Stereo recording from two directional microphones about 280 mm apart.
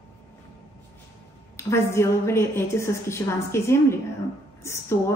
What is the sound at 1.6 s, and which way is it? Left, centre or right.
A woman's voice, centre.